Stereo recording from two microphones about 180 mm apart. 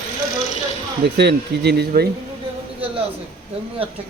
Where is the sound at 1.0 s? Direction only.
70° right (ahead or behind).